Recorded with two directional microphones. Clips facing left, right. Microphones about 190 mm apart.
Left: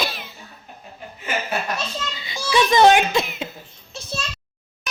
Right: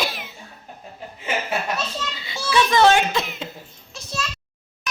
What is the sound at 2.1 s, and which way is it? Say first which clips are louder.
A child's voice: left 1 dB; 15° left (ahead or behind).